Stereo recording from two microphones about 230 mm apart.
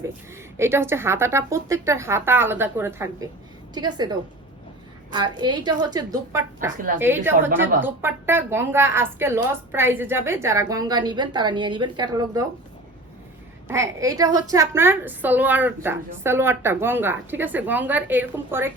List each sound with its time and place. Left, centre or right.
0.5 s a woman's voice: centre
13.7 s a woman's voice: centre